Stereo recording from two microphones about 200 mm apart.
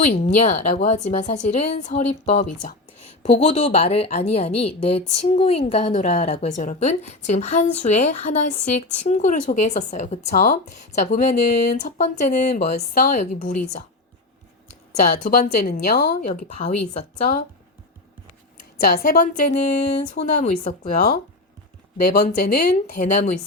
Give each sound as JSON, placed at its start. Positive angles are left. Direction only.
{"t": 0.0, "sound": "speech", "side_deg": 35}
{"t": 15.2, "sound": "speech", "side_deg": 50}
{"t": 16.2, "sound": "speech", "side_deg": 35}
{"t": 18.8, "sound": "speech", "side_deg": 50}
{"t": 20.4, "sound": "speech", "side_deg": 45}